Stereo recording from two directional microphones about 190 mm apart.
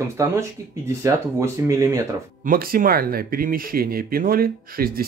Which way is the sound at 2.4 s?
50° right (ahead or behind).